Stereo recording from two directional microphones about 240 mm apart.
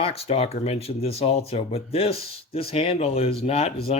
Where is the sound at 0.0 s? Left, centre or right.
Left.